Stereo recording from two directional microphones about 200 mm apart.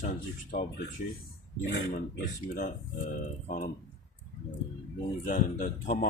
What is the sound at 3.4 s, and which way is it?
Speech, 40° left (ahead or behind).